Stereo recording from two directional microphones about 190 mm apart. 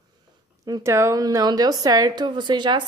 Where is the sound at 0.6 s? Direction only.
15° right (ahead or behind).